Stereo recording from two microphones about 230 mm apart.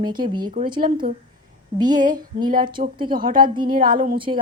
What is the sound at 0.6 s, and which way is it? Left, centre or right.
Speech, centre.